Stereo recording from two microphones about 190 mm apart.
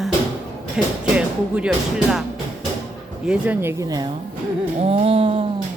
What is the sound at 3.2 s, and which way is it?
Speech, 5° right (ahead or behind).